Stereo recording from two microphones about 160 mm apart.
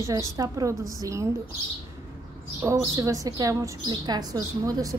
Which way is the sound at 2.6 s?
15° right (ahead or behind).